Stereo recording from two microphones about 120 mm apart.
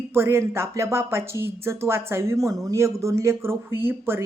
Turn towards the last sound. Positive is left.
turn(degrees=-20)  # may be behind; listen again after turning